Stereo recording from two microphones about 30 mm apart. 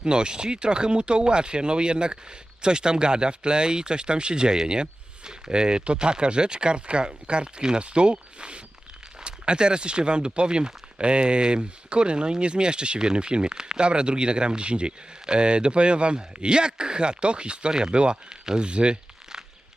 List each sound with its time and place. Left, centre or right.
0.0 s speech: right
13.8 s speech: right